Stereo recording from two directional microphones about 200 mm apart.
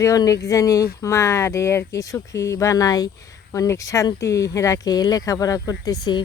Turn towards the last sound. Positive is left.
turn(degrees=20)  # may be behind; listen again after turning